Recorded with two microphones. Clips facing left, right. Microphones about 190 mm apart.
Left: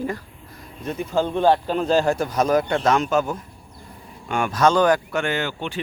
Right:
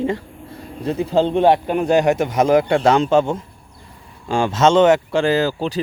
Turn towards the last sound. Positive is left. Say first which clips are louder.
# right 8 dB
turn(degrees=-35)  # may be behind; listen again after turning